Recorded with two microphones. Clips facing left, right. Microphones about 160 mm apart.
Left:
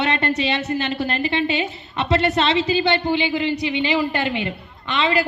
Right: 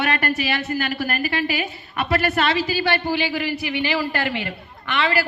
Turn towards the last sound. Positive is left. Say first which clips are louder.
# left 2 dB
turn(degrees=20)  # may be behind; listen again after turning